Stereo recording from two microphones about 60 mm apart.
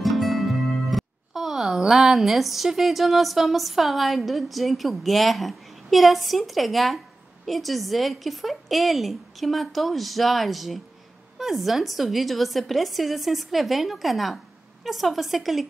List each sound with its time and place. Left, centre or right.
0.0 s a woman's voice: centre